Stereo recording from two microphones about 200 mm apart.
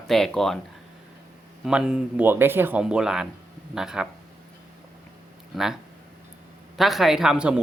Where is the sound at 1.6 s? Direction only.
5° right (ahead or behind).